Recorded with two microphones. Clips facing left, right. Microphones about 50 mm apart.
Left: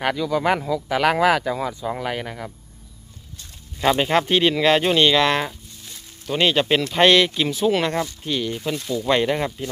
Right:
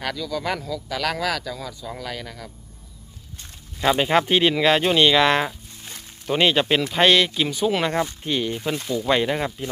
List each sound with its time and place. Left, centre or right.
0.0 s speech: left
3.8 s speech: centre
8.2 s speech: centre
9.0 s speech: centre